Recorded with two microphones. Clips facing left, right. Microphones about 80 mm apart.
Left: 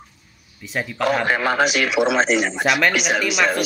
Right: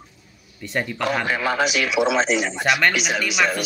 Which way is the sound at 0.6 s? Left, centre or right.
Centre.